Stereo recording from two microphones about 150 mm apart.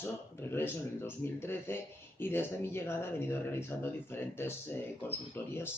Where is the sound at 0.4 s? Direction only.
15° left (ahead or behind).